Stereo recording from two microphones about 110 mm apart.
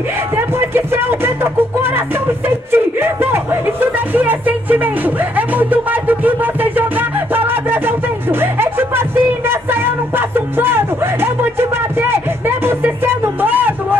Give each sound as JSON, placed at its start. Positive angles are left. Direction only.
{"t": 0.6, "sound": "speech", "side_deg": -20}
{"t": 7.4, "sound": "music", "side_deg": -20}